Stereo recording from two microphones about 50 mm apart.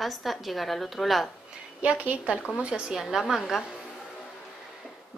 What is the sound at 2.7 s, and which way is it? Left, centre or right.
Speech, centre.